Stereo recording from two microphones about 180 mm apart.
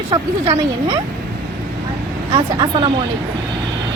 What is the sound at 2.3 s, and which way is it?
Speech, 25° right (ahead or behind).